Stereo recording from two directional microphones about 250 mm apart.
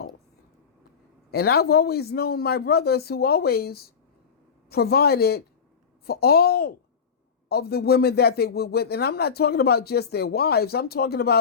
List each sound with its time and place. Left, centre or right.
1.3 s a man's voice: left